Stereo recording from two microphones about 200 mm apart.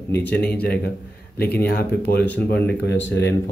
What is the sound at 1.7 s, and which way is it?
Speech, 50° left (ahead or behind).